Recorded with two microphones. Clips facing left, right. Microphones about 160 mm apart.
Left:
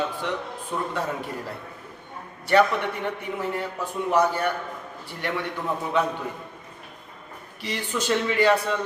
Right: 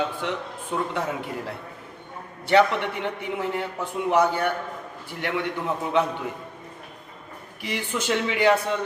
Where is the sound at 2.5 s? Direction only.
20° right (ahead or behind).